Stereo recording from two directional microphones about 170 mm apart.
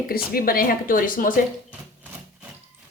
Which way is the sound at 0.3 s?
60° left (ahead or behind).